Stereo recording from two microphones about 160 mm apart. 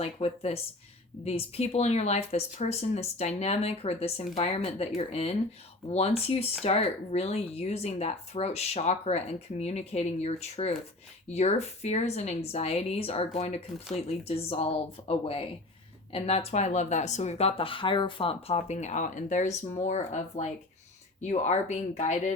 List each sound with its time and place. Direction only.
0.0 s speech: 40° left (ahead or behind)